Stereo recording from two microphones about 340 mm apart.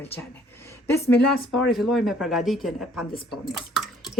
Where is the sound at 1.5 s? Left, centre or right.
Centre.